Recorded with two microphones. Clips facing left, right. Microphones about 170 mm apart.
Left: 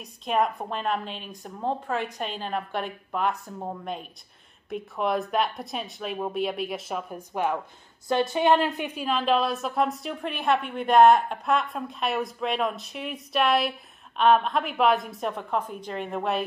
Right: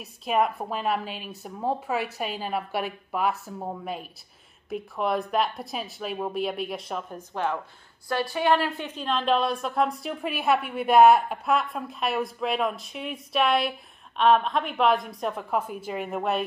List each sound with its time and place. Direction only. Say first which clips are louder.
0.0 s a woman's voice: right 1 dB; 5° right (ahead or behind)